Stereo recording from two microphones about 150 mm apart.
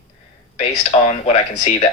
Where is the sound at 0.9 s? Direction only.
45° left (ahead or behind).